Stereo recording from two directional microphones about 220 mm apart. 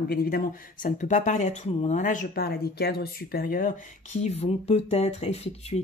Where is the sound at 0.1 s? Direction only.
45° left (ahead or behind).